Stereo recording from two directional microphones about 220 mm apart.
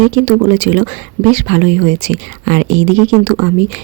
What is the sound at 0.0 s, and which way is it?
Speech, 35° right (ahead or behind).